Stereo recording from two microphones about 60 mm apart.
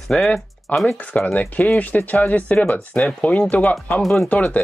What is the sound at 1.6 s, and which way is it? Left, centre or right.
Speech, left.